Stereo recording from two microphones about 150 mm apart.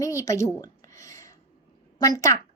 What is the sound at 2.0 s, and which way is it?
Speech, 25° left (ahead or behind).